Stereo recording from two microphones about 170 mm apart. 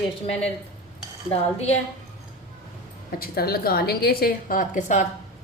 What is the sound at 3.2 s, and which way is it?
A woman's voice, 65° left (ahead or behind).